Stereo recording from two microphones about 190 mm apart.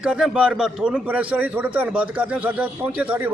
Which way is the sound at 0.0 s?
5° right (ahead or behind).